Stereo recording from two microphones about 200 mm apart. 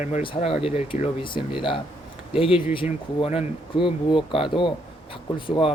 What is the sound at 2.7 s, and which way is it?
Speech, 25° left (ahead or behind).